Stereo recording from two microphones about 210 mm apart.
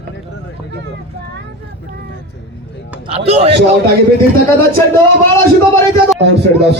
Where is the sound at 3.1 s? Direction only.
30° right (ahead or behind).